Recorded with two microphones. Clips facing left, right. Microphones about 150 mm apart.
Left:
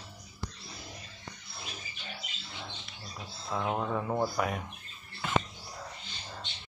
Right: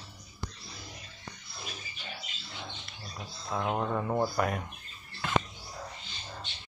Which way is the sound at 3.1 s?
15° right (ahead or behind).